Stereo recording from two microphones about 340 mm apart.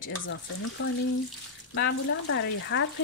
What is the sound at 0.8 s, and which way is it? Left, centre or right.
Speech, left.